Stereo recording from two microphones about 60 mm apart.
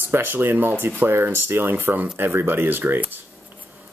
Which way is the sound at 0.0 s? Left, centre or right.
Right.